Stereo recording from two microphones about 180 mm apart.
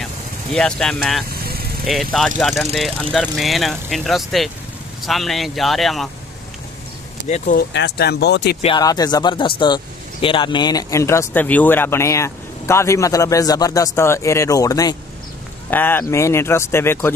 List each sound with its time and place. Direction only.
0.0 s speech: 5° left (ahead or behind)
1.3 s vehicle: 60° right (ahead or behind)
1.9 s speech: centre (ahead or behind)
7.2 s speech: 40° left (ahead or behind)
7.5 s speech: 65° left (ahead or behind)
8.7 s speech: 20° left (ahead or behind)